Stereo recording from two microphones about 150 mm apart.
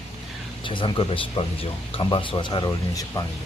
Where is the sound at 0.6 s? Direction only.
35° left (ahead or behind).